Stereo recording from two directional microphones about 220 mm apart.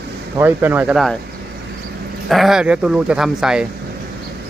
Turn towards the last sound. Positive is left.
turn(degrees=-5)  # may be behind; listen again after turning